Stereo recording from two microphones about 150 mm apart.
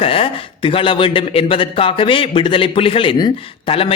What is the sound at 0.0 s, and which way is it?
Speech, 40° left (ahead or behind).